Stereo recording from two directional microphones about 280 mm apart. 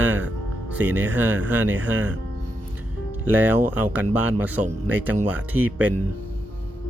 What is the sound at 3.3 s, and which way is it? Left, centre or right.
Speech, centre.